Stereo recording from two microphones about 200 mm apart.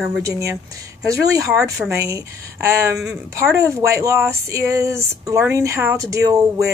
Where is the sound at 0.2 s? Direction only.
15° right (ahead or behind).